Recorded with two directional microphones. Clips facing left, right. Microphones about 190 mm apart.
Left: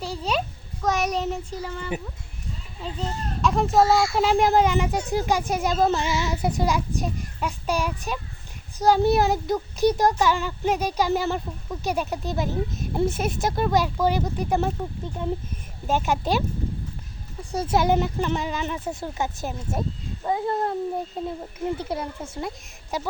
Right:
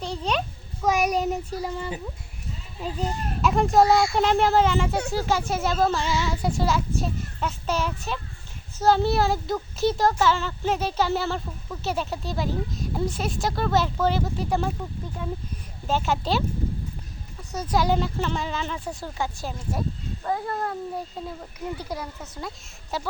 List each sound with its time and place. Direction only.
0.0 s a sound: 5° left (ahead or behind)
0.8 s child singing: 10° right (ahead or behind)
2.8 s speech: 5° right (ahead or behind); by 14.7 s 20° left (ahead or behind)
15.9 s speech: 15° left (ahead or behind)
17.5 s speech: 30° left (ahead or behind)